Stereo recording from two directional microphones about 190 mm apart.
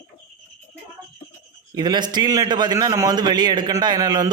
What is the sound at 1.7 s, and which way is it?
A man's voice, 20° right (ahead or behind).